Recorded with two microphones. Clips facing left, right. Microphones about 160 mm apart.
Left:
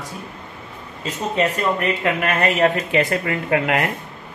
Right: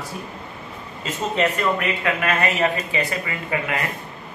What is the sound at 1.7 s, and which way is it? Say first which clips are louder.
Speech: left 2 dB; 45° left (ahead or behind).